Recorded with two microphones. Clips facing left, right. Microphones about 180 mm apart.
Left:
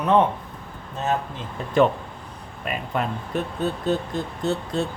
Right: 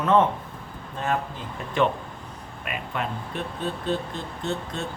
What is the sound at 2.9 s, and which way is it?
Speech, 40° left (ahead or behind).